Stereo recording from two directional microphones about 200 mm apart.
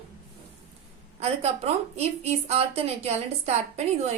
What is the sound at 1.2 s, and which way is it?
A woman's voice, 30° right (ahead or behind).